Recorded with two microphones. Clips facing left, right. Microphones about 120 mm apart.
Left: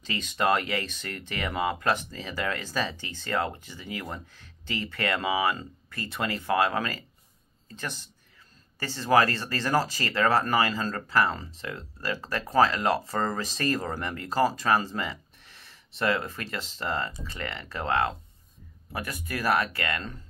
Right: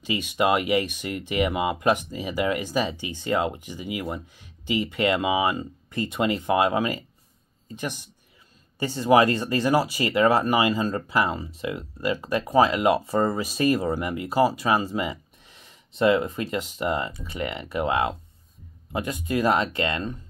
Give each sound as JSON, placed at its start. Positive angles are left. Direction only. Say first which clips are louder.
{"t": 0.0, "sound": "speech", "louder": "right 4 dB", "side_deg": -10}